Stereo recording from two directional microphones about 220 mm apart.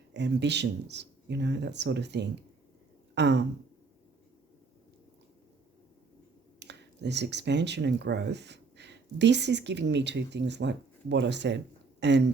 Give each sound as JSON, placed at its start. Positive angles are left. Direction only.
{"t": 0.1, "sound": "speech", "side_deg": -50}
{"t": 6.6, "sound": "speech", "side_deg": -50}